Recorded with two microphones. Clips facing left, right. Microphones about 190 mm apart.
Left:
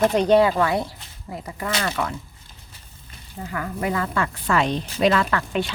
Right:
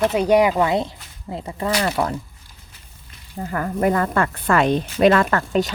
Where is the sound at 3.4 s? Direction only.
45° right (ahead or behind).